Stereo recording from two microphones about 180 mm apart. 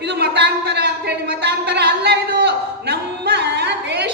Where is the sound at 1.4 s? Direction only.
65° right (ahead or behind).